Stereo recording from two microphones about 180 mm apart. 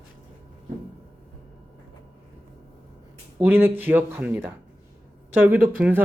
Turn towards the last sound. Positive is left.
turn(degrees=-10)  # may be behind; listen again after turning